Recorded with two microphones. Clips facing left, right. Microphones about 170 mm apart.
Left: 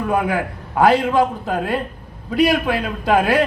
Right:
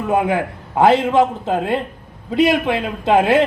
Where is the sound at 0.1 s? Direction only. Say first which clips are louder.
Right 4 dB; 20° right (ahead or behind).